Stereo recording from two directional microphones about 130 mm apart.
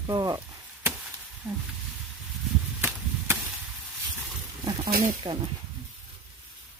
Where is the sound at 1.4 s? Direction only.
15° right (ahead or behind).